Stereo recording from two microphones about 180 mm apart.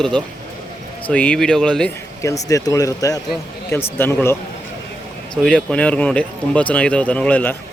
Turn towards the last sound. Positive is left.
turn(degrees=10)  # may be behind; listen again after turning